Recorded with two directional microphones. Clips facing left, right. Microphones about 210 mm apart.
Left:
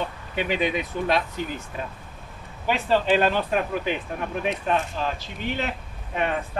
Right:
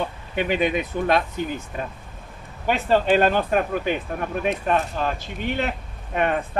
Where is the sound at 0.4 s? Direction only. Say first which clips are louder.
Right 3 dB; 50° right (ahead or behind).